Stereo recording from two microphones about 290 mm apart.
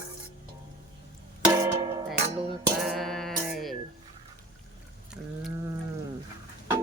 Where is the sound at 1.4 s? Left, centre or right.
Centre.